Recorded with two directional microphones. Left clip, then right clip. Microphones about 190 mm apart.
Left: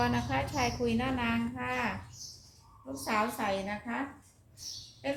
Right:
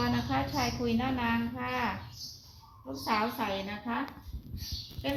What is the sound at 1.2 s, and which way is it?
Speech, 20° left (ahead or behind).